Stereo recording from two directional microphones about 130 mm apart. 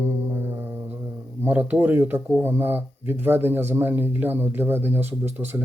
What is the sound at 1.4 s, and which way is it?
Speech, 15° right (ahead or behind).